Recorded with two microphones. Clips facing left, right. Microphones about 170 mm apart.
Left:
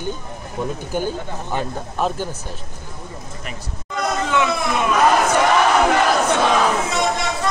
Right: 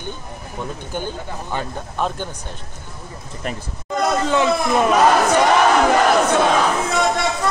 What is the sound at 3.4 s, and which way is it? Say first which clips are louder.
Speech: right 5 dB; 35° right (ahead or behind).